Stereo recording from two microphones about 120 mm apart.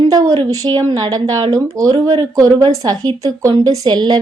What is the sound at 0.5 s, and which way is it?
A woman's voice, 30° right (ahead or behind).